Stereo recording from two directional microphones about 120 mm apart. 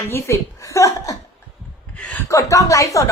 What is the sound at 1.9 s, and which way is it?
Speech, 10° left (ahead or behind).